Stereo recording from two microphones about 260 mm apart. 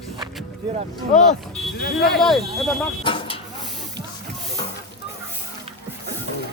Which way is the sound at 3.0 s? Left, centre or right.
Centre.